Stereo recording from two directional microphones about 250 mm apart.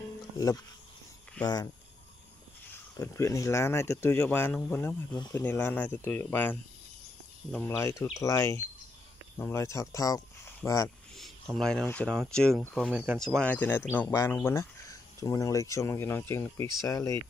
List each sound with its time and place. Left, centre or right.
1.4 s speech: centre
2.7 s speech: centre
11.1 s speech: centre